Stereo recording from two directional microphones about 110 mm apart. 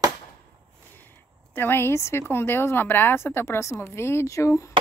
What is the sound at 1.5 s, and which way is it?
Speech, 20° left (ahead or behind).